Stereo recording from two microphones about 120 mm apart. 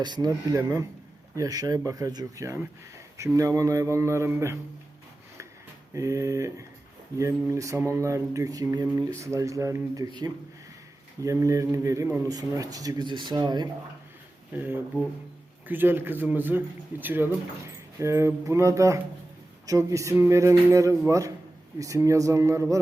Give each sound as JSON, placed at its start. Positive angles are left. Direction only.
{"t": 0.0, "sound": "speech", "side_deg": -35}
{"t": 5.9, "sound": "speech", "side_deg": -25}
{"t": 12.3, "sound": "speech", "side_deg": -30}
{"t": 14.5, "sound": "speech", "side_deg": -15}